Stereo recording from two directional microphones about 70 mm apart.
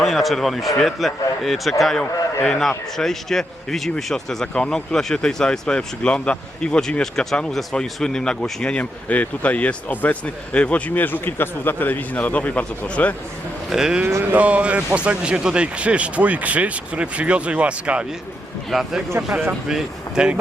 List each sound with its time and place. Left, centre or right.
0.0 s a man's voice: centre; by 13.1 s left
13.7 s speech: centre
14.2 s speech: right
18.7 s speech: centre